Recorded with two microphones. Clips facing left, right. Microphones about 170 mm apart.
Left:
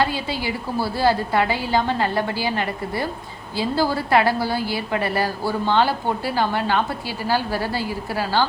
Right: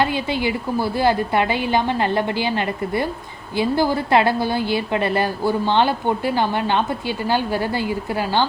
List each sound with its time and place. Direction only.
0.0 s a woman's voice: 20° right (ahead or behind)